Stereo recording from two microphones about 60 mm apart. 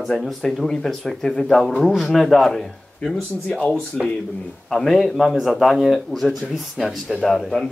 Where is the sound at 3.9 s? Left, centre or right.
Centre.